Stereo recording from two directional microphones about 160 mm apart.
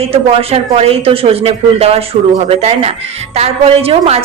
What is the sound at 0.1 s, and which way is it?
A woman's voice, 35° right (ahead or behind).